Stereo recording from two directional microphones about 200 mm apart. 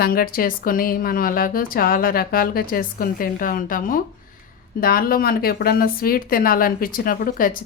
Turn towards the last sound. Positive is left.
turn(degrees=45)  # may be behind; listen again after turning